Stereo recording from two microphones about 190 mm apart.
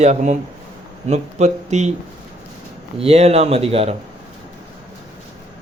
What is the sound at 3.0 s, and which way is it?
Speech, 35° right (ahead or behind).